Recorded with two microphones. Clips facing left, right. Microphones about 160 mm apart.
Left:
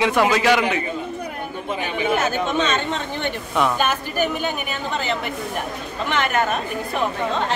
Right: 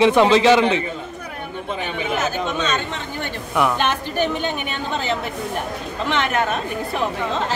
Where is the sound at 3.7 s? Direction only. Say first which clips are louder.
Right 1 dB; 10° left (ahead or behind).